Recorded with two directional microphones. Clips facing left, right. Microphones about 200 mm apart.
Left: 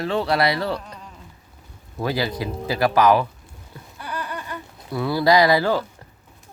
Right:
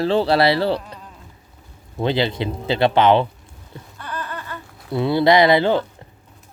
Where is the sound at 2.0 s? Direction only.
25° right (ahead or behind).